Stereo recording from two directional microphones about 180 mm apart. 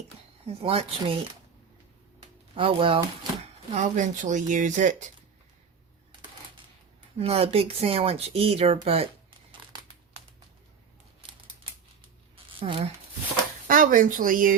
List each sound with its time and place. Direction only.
0.4 s speech: 35° right (ahead or behind)
2.6 s speech: 30° right (ahead or behind)
7.2 s speech: 35° right (ahead or behind)
12.5 s speech: 30° right (ahead or behind)
13.7 s speech: 50° right (ahead or behind)